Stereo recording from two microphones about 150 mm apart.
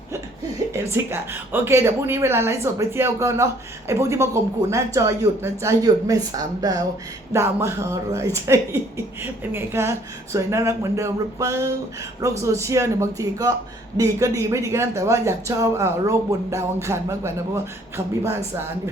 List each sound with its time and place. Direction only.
0.7 s a woman's voice: 15° right (ahead or behind)